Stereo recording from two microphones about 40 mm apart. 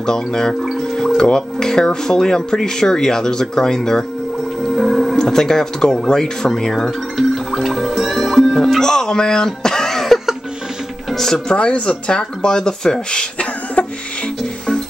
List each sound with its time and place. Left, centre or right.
0.0 s speech: centre
0.7 s music: centre
2.0 s speech: centre
4.6 s music: centre
5.2 s speech: centre
7.2 s music: centre
8.5 s speech: centre
11.4 s speech: left